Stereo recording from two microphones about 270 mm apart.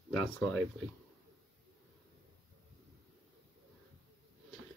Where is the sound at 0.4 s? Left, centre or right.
Centre.